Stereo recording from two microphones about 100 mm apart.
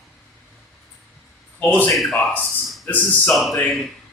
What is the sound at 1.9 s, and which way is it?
Speech, centre (ahead or behind).